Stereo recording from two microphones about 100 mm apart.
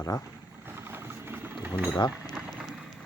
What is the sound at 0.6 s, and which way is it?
Vehicle, 20° right (ahead or behind).